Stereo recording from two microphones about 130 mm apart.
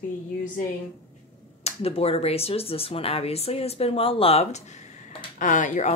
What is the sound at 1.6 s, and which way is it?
Speech, 50° left (ahead or behind).